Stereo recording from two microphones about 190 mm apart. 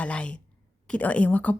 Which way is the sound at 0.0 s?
5° left (ahead or behind).